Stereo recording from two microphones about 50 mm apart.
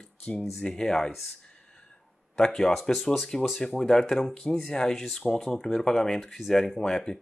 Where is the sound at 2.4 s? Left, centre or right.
Centre.